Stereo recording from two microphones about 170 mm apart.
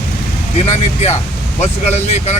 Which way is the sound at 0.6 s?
40° left (ahead or behind).